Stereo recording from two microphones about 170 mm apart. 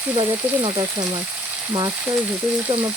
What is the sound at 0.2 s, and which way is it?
Frying, 30° right (ahead or behind).